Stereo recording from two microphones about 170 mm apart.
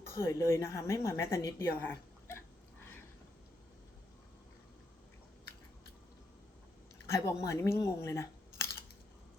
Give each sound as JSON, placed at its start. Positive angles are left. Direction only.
{"t": 0.0, "sound": "speech", "side_deg": 15}
{"t": 7.1, "sound": "a woman's voice", "side_deg": 15}